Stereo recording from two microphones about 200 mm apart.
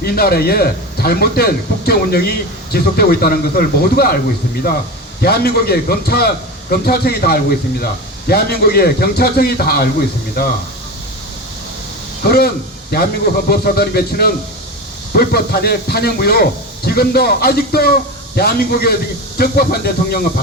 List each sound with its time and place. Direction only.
0.0 s speech: 50° left (ahead or behind)
5.2 s speech: 50° left (ahead or behind)
12.2 s speech: 50° left (ahead or behind)